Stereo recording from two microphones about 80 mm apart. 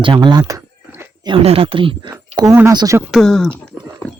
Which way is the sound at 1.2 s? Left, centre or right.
Right.